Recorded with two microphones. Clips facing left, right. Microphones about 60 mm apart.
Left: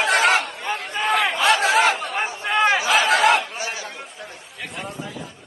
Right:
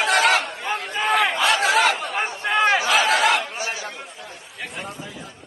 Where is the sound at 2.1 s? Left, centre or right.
Centre.